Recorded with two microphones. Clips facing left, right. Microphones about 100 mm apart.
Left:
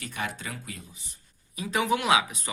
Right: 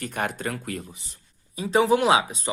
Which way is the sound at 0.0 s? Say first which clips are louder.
Right 6 dB; 50° right (ahead or behind).